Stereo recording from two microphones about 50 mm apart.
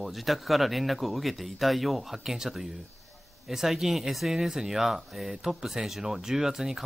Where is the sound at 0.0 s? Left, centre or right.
Centre.